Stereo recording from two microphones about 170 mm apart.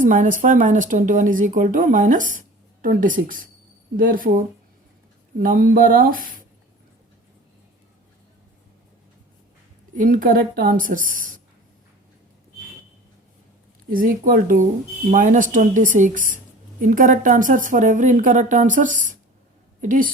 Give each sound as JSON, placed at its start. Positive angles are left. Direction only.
{"t": 0.0, "sound": "speech", "side_deg": -50}
{"t": 9.9, "sound": "speech", "side_deg": -50}
{"t": 13.9, "sound": "a woman's voice", "side_deg": -55}